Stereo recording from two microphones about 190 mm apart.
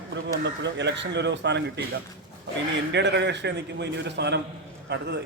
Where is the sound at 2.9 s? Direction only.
65° right (ahead or behind).